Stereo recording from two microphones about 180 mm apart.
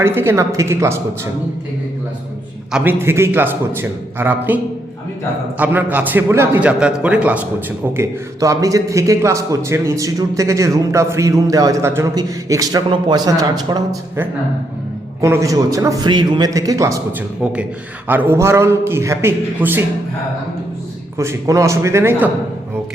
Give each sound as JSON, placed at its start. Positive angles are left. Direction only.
{"t": 0.0, "sound": "a man's voice", "side_deg": -15}
{"t": 2.7, "sound": "a man's voice", "side_deg": -10}
{"t": 21.2, "sound": "a man's voice", "side_deg": -15}